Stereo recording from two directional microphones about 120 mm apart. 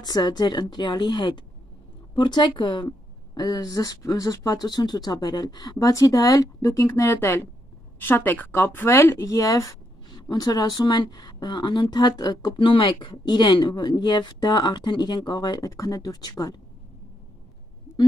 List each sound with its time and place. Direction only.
0.0 s speech: 35° left (ahead or behind)